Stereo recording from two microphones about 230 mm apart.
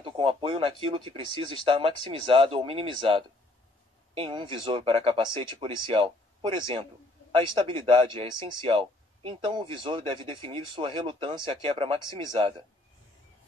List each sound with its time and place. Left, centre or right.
0.0 s speech: right